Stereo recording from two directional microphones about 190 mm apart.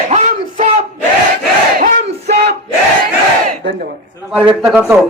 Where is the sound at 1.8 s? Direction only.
50° right (ahead or behind).